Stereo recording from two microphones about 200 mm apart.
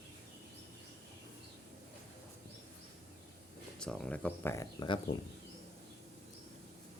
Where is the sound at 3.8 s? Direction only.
5° left (ahead or behind).